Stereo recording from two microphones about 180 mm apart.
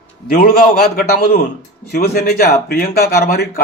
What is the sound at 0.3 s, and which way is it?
A man's voice, 55° left (ahead or behind).